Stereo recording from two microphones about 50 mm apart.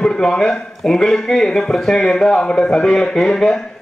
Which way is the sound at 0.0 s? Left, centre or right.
Centre.